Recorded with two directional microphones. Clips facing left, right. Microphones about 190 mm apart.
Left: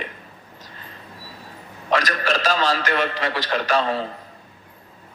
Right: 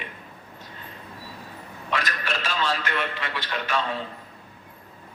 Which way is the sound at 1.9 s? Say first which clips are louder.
Left 8 dB; 90° left.